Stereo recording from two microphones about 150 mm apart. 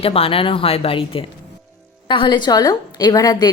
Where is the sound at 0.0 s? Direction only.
40° left (ahead or behind).